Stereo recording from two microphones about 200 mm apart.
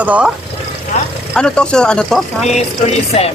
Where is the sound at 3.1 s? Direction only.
30° left (ahead or behind).